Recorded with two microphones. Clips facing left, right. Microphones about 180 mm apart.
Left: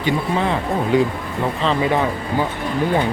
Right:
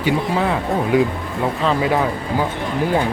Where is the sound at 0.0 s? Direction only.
5° right (ahead or behind).